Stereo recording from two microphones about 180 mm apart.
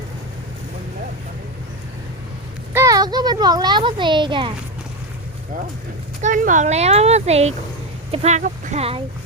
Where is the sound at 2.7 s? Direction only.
20° right (ahead or behind).